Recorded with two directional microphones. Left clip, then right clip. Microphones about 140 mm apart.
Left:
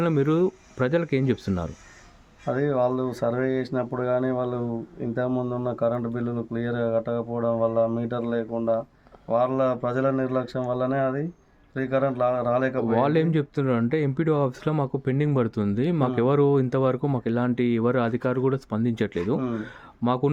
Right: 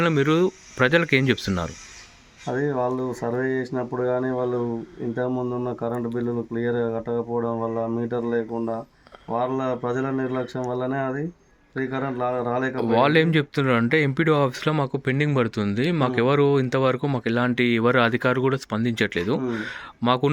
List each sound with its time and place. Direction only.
0.0 s speech: 10° left (ahead or behind)
2.5 s speech: 25° left (ahead or behind)
12.7 s speech: 10° left (ahead or behind)